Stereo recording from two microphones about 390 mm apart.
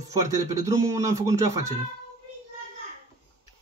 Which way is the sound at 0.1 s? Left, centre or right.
Centre.